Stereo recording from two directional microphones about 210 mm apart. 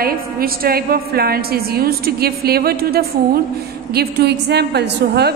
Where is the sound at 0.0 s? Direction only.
45° right (ahead or behind).